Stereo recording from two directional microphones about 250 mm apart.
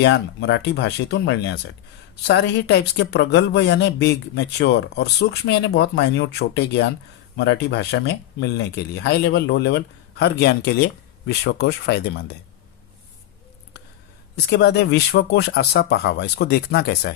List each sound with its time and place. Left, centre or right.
0.0 s speech: left
7.3 s speech: left
14.4 s speech: left